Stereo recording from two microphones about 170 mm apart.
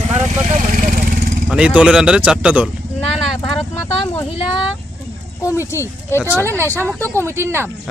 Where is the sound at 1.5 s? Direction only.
5° right (ahead or behind).